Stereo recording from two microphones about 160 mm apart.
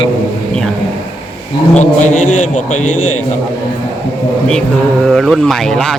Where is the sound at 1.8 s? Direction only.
50° left (ahead or behind).